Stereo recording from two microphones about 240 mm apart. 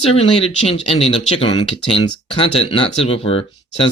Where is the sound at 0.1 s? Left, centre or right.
Left.